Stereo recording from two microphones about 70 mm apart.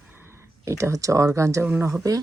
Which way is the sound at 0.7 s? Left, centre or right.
Right.